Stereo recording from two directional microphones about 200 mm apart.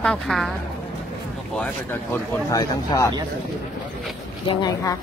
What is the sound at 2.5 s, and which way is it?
Speech, 15° left (ahead or behind).